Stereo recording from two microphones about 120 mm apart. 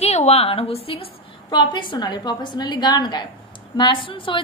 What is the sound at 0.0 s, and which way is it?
A woman's voice, 60° left (ahead or behind).